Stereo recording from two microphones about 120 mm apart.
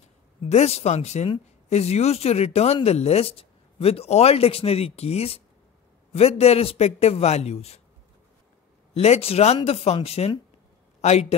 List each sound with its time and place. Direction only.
0.4 s speech: 60° left (ahead or behind)
8.9 s a man's voice: 60° left (ahead or behind)